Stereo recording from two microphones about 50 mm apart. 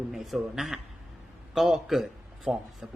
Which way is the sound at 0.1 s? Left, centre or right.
Centre.